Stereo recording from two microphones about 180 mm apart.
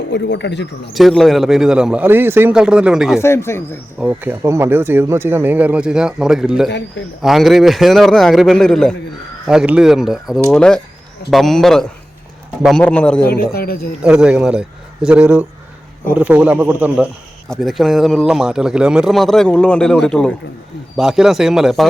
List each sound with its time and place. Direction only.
0.1 s speech: 75° left (ahead or behind)
0.9 s a man's voice: centre (ahead or behind)
3.2 s speech: 15° left (ahead or behind)
4.0 s a man's voice: 10° right (ahead or behind); by 13.2 s 5° left (ahead or behind)
13.2 s a man's voice: 60° left (ahead or behind)
14.0 s a man's voice: 5° right (ahead or behind)